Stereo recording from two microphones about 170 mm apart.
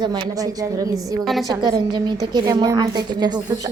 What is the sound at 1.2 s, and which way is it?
Speech, centre (ahead or behind).